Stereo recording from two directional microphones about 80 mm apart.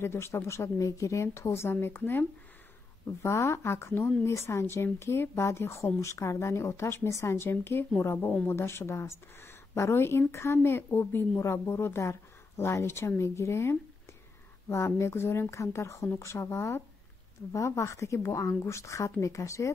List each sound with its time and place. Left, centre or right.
0.0 s a woman's voice: left
3.1 s a woman's voice: left